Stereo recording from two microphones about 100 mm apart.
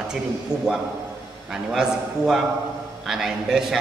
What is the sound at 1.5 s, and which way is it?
A man's voice, 5° right (ahead or behind).